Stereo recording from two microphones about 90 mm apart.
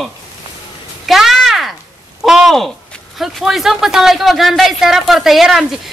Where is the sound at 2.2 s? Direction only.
Centre (ahead or behind).